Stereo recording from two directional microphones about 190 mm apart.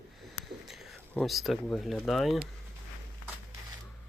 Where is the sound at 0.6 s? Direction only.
Centre (ahead or behind).